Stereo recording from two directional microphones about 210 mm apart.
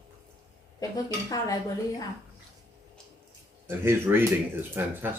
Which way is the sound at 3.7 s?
10° right (ahead or behind).